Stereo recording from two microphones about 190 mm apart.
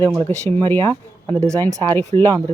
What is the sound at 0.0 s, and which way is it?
Speech, 10° left (ahead or behind).